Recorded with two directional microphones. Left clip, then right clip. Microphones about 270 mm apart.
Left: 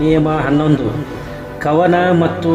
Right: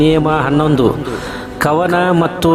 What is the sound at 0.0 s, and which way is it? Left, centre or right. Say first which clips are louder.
Speech: right 2 dB; right.